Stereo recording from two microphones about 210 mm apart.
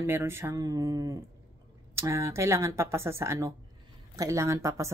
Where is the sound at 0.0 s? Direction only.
10° right (ahead or behind).